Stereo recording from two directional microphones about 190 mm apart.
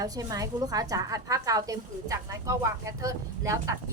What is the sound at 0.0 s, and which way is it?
A woman's voice, 20° right (ahead or behind).